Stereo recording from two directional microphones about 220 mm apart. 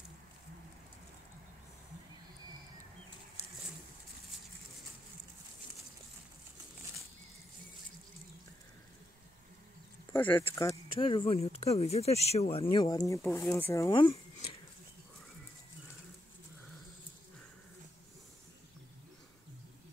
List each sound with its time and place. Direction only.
10.1 s speech: 10° left (ahead or behind)
10.7 s speech: 25° left (ahead or behind)